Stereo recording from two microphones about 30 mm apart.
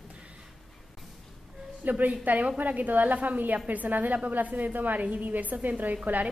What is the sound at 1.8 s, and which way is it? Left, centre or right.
A woman's voice, right.